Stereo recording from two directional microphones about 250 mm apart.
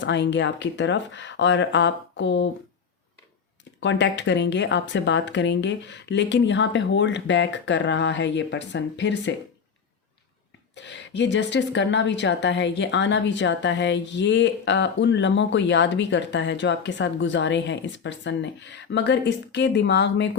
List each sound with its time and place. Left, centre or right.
0.0 s speech: left
3.6 s speech: left
10.8 s speech: left